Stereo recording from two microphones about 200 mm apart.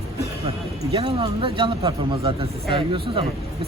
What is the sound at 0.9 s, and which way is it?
Speech, 30° right (ahead or behind).